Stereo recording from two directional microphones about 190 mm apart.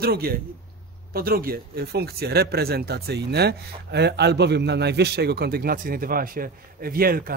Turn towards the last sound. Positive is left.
turn(degrees=-50)  # may be behind; listen again after turning